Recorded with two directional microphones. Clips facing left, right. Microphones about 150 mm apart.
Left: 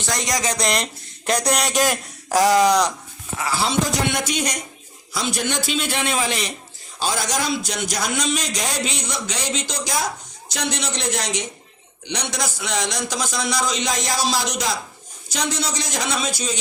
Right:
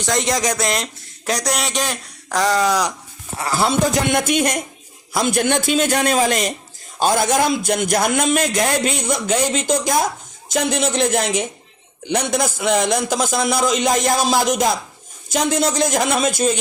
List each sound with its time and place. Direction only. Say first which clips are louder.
0.1 s speech: right 5 dB; 20° right (ahead or behind)
0.4 s speech: right 2 dB; 5° right (ahead or behind)
3.3 s speech: right 2 dB; 35° right (ahead or behind)
3.6 s a man's voice: right 5 dB; 50° right (ahead or behind)